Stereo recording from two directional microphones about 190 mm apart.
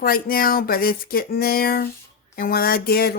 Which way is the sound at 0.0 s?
50° left (ahead or behind).